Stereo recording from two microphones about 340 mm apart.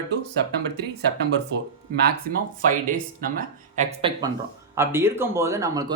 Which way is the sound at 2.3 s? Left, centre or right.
Right.